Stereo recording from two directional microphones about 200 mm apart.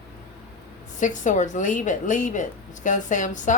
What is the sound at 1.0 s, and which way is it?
Speech, 40° left (ahead or behind).